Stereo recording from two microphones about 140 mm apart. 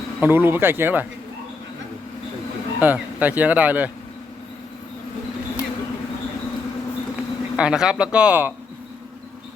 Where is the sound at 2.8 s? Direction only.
10° right (ahead or behind).